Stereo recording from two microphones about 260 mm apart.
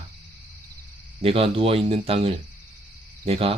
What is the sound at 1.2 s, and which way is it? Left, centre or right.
Speech, right.